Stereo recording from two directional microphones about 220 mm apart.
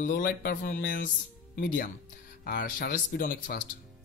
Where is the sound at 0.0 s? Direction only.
35° left (ahead or behind).